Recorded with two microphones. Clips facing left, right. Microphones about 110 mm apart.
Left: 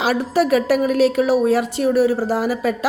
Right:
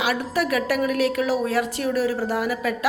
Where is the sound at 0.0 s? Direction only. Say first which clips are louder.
Left 6 dB; 30° left (ahead or behind).